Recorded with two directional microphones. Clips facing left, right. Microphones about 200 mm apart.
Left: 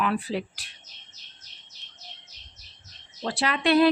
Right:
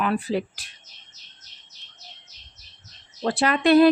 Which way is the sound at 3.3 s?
50° right (ahead or behind).